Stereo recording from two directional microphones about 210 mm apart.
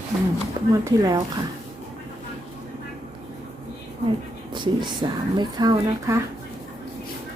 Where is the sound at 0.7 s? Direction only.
15° right (ahead or behind).